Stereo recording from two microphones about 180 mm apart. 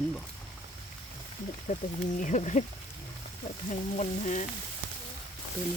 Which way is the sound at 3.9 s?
40° left (ahead or behind).